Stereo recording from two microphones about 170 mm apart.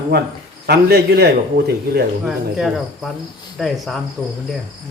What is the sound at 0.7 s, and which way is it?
A man's voice, 70° right (ahead or behind).